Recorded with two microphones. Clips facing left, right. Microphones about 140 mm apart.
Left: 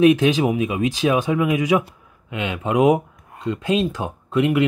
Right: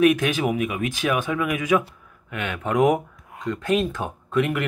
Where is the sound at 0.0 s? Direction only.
20° left (ahead or behind).